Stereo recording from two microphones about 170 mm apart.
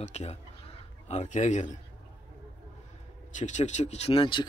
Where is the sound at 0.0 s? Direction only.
40° left (ahead or behind).